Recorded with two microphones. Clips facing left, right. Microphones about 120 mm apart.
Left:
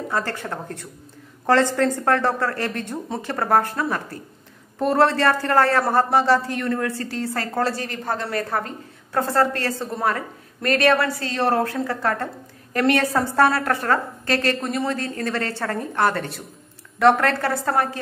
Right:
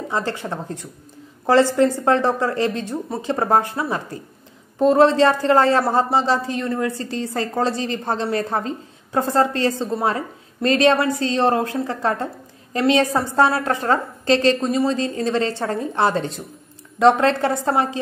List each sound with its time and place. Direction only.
0.1 s a woman's voice: 15° right (ahead or behind)